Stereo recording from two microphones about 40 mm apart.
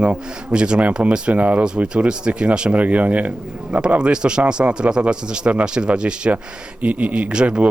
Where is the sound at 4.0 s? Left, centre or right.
Right.